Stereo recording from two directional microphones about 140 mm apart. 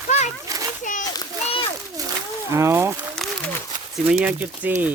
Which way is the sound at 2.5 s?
20° right (ahead or behind).